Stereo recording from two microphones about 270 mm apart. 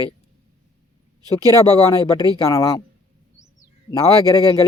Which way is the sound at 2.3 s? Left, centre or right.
Centre.